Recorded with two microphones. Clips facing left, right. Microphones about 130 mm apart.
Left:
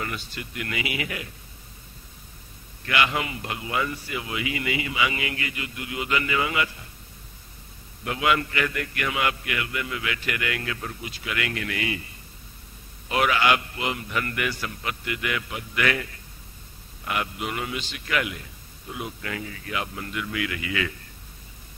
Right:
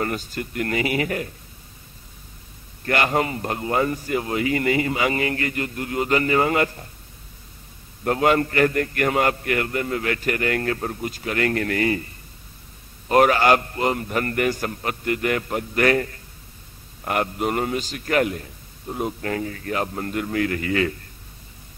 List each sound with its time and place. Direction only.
0.0 s a man's voice: 45° right (ahead or behind)
2.8 s a man's voice: 40° right (ahead or behind)
8.0 s a man's voice: 45° right (ahead or behind)
13.1 s a man's voice: 45° right (ahead or behind)